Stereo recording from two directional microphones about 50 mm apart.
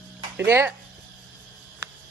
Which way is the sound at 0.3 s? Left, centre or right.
Right.